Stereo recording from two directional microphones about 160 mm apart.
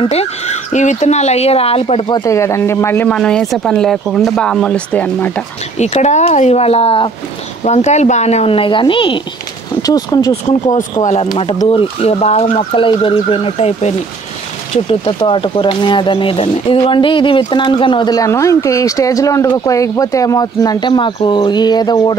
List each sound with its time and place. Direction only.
0.0 s speech: 40° left (ahead or behind); by 5.4 s 10° left (ahead or behind)
5.8 s speech: 45° left (ahead or behind); by 10.3 s 25° left (ahead or behind)
10.3 s speech: 50° left (ahead or behind); by 22.1 s 25° left (ahead or behind)